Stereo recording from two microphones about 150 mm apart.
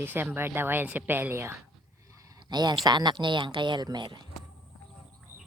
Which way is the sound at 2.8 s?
30° right (ahead or behind).